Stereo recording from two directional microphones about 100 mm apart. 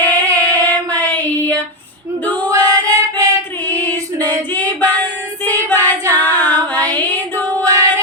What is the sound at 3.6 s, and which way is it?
Female singing, 20° left (ahead or behind).